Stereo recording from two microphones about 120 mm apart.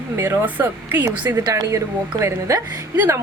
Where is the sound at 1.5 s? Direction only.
25° right (ahead or behind).